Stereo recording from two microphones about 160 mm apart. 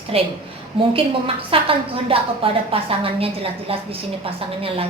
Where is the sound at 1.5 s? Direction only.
35° right (ahead or behind).